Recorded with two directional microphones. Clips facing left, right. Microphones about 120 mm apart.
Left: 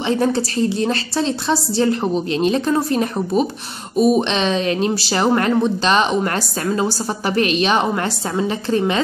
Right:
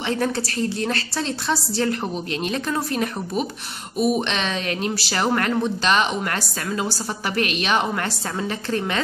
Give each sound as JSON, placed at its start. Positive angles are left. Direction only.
{"t": 0.1, "sound": "speech", "side_deg": 20}